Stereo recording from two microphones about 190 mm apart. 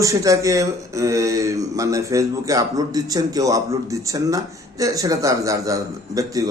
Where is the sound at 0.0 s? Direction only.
15° right (ahead or behind).